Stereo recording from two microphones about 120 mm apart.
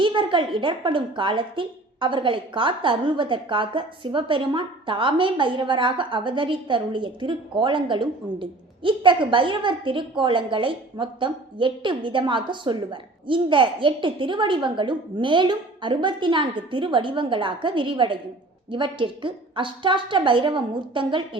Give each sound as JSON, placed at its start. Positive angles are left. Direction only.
{"t": 0.0, "sound": "a woman's voice", "side_deg": -45}